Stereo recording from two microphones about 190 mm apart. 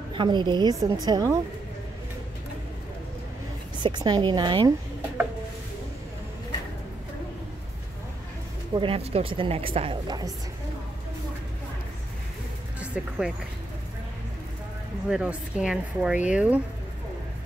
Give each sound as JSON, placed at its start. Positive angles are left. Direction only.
{"t": 0.1, "sound": "a woman's voice", "side_deg": -25}
{"t": 3.8, "sound": "a woman's voice", "side_deg": -25}
{"t": 8.7, "sound": "a woman's voice", "side_deg": -30}
{"t": 12.8, "sound": "speech", "side_deg": -5}
{"t": 15.0, "sound": "a woman's voice", "side_deg": -5}